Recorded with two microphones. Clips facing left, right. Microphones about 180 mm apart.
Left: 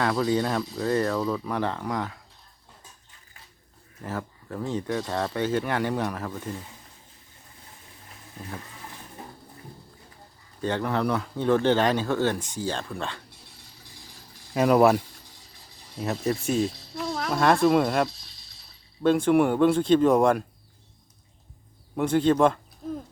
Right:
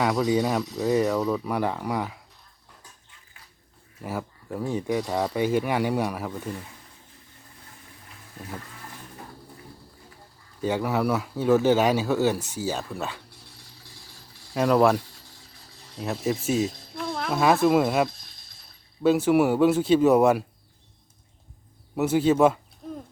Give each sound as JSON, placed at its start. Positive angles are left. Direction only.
{"t": 0.0, "sound": "speech", "side_deg": -10}
{"t": 4.0, "sound": "speech", "side_deg": -10}
{"t": 10.6, "sound": "speech", "side_deg": -10}
{"t": 14.5, "sound": "speech", "side_deg": 5}
{"t": 16.7, "sound": "cricket", "side_deg": -50}
{"t": 17.0, "sound": "speech", "side_deg": 0}
{"t": 18.1, "sound": "a sound", "side_deg": -50}
{"t": 19.0, "sound": "speech", "side_deg": -5}
{"t": 21.9, "sound": "speech", "side_deg": -5}